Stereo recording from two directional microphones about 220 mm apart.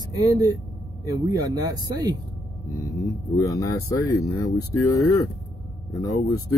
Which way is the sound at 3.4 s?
15° left (ahead or behind).